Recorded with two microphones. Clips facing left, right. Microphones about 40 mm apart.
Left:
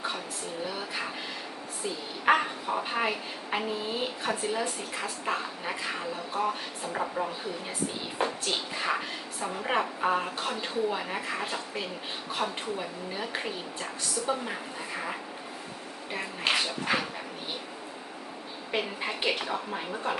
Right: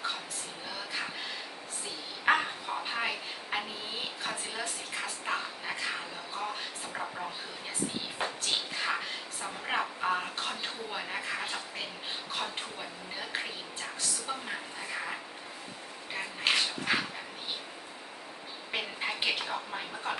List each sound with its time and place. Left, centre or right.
2.2 s a woman's voice: centre
6.3 s a woman's voice: centre
8.4 s a woman's voice: centre
13.1 s a woman's voice: centre
16.1 s a woman's voice: centre
18.7 s a woman's voice: centre